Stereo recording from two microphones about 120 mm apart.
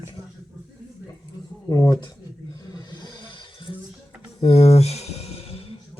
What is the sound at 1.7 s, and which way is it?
Speech, 30° left (ahead or behind).